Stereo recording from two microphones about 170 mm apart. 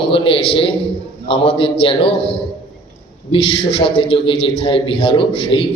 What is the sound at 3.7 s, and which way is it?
A man's voice, 35° left (ahead or behind).